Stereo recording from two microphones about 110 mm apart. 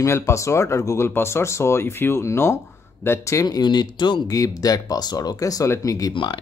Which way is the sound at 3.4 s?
40° left (ahead or behind).